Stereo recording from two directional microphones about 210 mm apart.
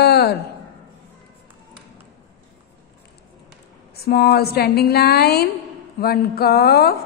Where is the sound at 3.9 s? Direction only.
50° left (ahead or behind).